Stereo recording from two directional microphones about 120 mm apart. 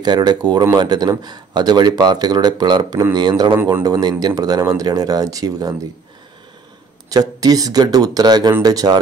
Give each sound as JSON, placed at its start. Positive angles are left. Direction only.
{"t": 0.0, "sound": "speech", "side_deg": -35}
{"t": 7.1, "sound": "speech", "side_deg": -30}